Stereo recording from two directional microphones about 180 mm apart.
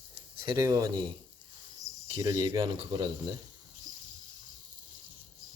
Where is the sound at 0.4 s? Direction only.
20° right (ahead or behind).